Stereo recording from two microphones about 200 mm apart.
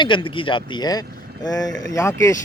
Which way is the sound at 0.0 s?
25° left (ahead or behind).